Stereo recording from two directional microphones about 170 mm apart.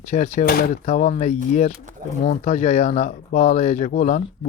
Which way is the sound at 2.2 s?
40° left (ahead or behind).